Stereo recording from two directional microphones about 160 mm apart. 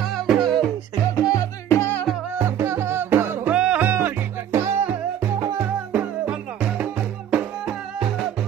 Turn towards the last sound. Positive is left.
turn(degrees=-5)  # may be behind; listen again after turning